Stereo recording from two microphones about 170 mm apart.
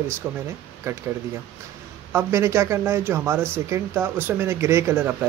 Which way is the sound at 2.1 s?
15° right (ahead or behind).